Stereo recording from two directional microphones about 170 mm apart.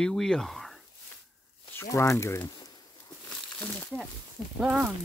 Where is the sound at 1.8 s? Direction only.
15° left (ahead or behind).